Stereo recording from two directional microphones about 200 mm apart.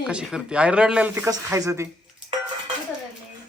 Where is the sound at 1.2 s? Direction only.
15° right (ahead or behind).